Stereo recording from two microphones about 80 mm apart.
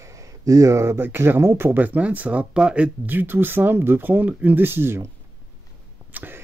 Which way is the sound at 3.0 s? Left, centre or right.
Right.